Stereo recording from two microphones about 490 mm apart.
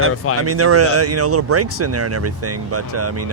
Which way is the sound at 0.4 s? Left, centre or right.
Right.